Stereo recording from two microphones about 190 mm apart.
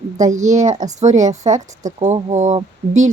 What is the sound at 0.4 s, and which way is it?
Speech, 40° right (ahead or behind).